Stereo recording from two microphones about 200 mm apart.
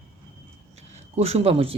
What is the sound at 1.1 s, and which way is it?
Speech, 30° right (ahead or behind).